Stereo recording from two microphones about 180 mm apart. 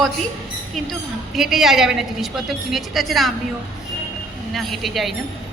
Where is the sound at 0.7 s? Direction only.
Centre (ahead or behind).